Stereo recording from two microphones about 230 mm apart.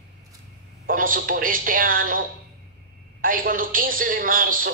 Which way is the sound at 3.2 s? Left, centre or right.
Right.